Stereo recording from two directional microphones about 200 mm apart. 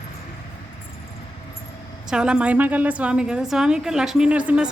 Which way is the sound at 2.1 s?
5° right (ahead or behind).